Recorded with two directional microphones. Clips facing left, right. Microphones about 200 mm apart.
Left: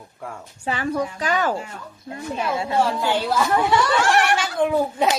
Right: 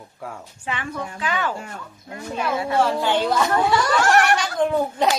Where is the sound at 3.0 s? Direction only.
5° left (ahead or behind).